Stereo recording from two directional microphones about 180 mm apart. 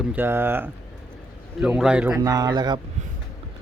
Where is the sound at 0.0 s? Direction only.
10° right (ahead or behind).